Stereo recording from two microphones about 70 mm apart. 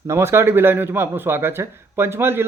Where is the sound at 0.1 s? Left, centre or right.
Right.